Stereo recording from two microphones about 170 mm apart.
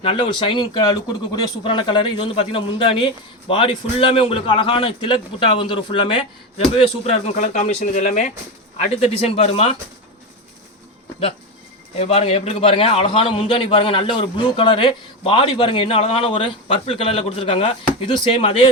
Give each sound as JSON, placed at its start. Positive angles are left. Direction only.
{"t": 0.0, "sound": "a man's voice", "side_deg": 30}
{"t": 11.9, "sound": "a man's voice", "side_deg": 35}